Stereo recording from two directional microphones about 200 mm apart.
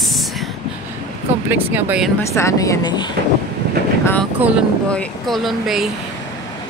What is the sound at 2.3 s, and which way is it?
Speech, 15° left (ahead or behind).